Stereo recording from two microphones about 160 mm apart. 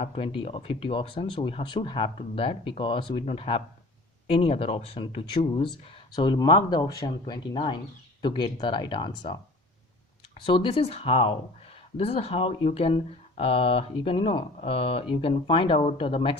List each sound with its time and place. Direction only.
0.0 s speech: 35° left (ahead or behind)